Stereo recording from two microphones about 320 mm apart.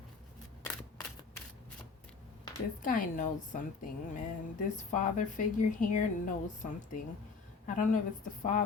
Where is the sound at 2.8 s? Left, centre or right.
Left.